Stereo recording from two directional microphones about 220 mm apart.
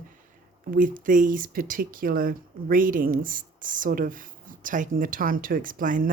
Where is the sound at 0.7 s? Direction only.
40° right (ahead or behind).